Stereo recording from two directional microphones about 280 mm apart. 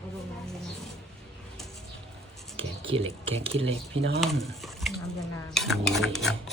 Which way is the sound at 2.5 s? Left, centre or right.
Centre.